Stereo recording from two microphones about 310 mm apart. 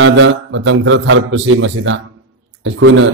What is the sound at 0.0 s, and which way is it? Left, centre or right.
A man's voice, right.